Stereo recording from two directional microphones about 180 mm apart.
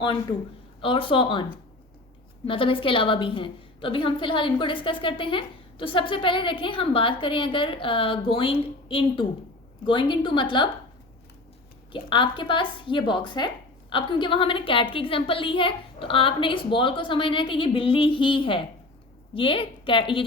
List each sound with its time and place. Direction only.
0.8 s a woman's voice: 30° left (ahead or behind)
2.5 s a woman's voice: 30° left (ahead or behind)
11.9 s a woman's voice: 25° left (ahead or behind)